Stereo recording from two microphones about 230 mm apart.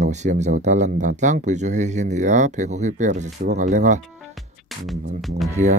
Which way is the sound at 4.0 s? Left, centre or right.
Centre.